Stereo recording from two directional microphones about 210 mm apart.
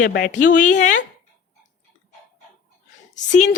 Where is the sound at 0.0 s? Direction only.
40° left (ahead or behind).